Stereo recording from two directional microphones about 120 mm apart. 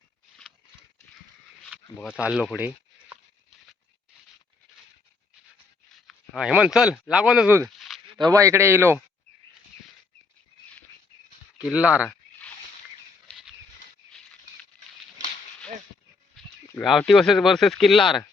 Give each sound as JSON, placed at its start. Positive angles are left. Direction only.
{"t": 2.1, "sound": "speech", "side_deg": -5}
{"t": 6.1, "sound": "speech", "side_deg": -5}
{"t": 7.8, "sound": "a sound", "side_deg": 0}
{"t": 8.2, "sound": "speech", "side_deg": -25}
{"t": 11.6, "sound": "speech", "side_deg": -10}
{"t": 14.1, "sound": "a sound", "side_deg": 5}
{"t": 17.1, "sound": "speech", "side_deg": 0}